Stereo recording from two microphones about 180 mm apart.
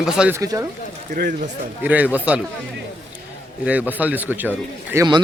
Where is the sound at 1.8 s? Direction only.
10° right (ahead or behind).